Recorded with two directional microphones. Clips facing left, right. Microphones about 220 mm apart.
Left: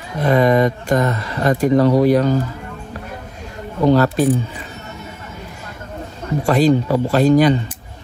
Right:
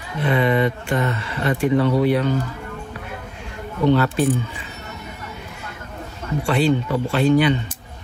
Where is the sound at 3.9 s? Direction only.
40° left (ahead or behind).